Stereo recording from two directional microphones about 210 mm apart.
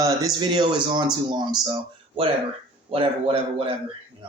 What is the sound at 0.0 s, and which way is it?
Speech, 15° right (ahead or behind).